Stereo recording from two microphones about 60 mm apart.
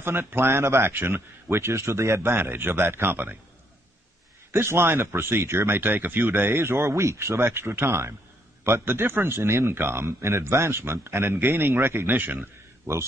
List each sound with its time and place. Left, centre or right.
0.0 s speech: right
2.3 s speech: right
4.5 s speech: right
12.9 s speech: right